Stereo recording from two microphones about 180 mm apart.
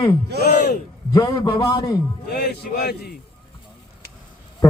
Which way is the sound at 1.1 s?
25° left (ahead or behind).